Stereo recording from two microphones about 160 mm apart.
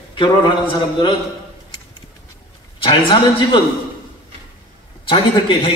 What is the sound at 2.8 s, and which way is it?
Speech, 35° left (ahead or behind).